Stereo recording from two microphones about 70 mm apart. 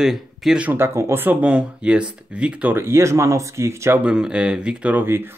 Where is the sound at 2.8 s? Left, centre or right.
Right.